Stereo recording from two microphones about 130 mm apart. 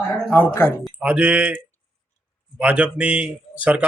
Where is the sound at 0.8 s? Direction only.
10° right (ahead or behind).